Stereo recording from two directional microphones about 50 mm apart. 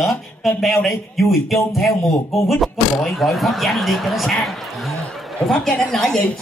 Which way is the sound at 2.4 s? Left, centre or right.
Centre.